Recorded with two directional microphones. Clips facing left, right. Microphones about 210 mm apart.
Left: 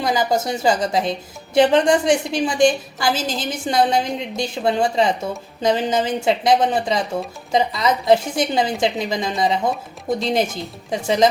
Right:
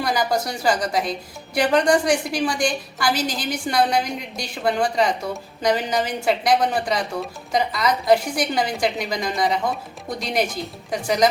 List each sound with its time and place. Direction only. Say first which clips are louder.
0.0 s a woman's voice: left 2 dB; 20° left (ahead or behind)